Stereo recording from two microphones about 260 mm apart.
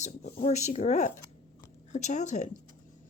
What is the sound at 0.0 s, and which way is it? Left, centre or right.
Speech, left.